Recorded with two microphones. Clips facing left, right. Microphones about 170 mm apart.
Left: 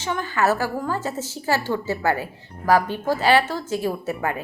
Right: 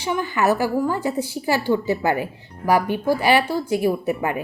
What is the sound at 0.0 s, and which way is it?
A woman's voice, 15° right (ahead or behind).